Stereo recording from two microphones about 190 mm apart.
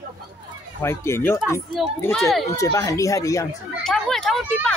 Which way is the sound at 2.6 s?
15° left (ahead or behind).